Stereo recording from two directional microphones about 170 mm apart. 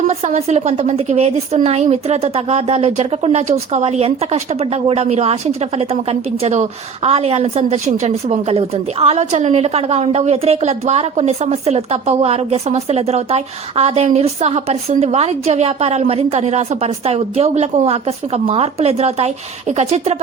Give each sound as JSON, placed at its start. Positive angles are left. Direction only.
{"t": 0.1, "sound": "a woman's voice", "side_deg": -40}